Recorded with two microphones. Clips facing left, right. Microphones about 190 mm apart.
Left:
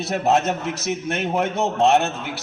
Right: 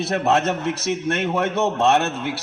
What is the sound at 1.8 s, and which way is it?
Speech, 65° right (ahead or behind).